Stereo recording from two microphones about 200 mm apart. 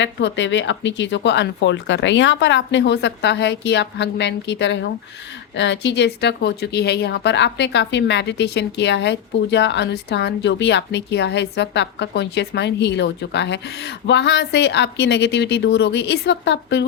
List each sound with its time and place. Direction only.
0.0 s speech: 65° left (ahead or behind)